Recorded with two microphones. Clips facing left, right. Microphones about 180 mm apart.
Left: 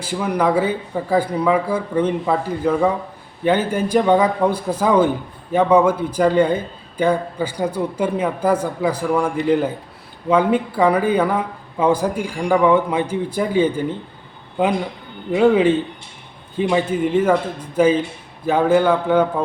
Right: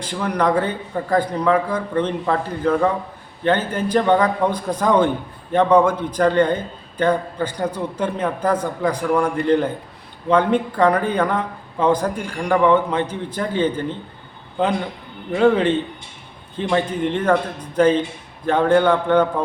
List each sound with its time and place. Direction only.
0.0 s a man's voice: 5° left (ahead or behind)